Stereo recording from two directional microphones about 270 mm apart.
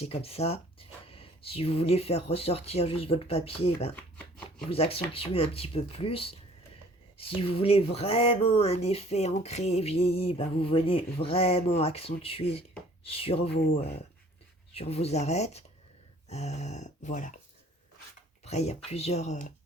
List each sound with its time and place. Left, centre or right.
0.0 s speech: left
14.7 s speech: left
18.4 s speech: left